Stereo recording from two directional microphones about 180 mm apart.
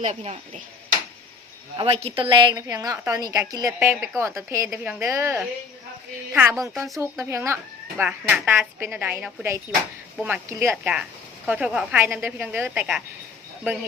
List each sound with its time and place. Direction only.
0.0 s speech: 40° right (ahead or behind)
1.7 s a woman's voice: 30° right (ahead or behind); by 13.0 s 10° right (ahead or behind)